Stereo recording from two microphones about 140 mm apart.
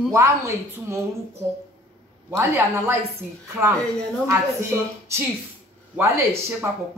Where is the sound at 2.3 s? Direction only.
20° right (ahead or behind).